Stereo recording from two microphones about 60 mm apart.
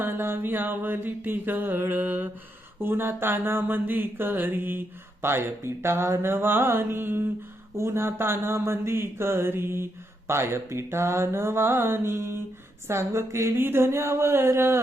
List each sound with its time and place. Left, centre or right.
0.0 s mantra: right
7.8 s speech: right